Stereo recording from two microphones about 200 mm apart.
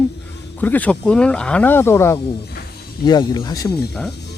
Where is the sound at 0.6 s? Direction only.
10° left (ahead or behind).